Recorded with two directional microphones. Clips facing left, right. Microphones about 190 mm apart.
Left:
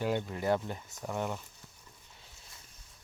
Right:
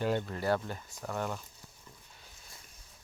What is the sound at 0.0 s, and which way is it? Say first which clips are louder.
Speech: even; 10° left (ahead or behind).